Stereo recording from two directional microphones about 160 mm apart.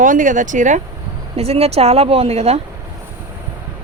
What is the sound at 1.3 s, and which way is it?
Speech, 40° right (ahead or behind).